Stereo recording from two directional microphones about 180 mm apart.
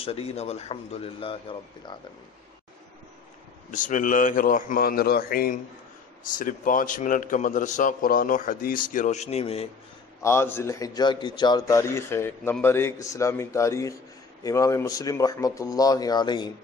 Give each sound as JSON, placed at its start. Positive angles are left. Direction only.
{"t": 0.0, "sound": "speech", "side_deg": 30}
{"t": 3.7, "sound": "a man's voice", "side_deg": 45}
{"t": 10.2, "sound": "a man's voice", "side_deg": 15}